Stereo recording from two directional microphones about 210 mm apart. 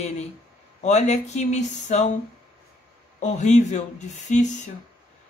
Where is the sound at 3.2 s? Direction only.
35° left (ahead or behind).